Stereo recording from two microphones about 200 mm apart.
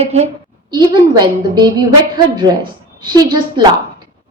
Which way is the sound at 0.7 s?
20° right (ahead or behind).